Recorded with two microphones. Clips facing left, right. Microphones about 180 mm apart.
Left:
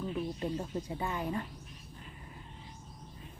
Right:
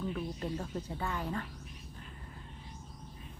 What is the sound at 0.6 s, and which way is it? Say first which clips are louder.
Speech: left 2 dB; 15° left (ahead or behind).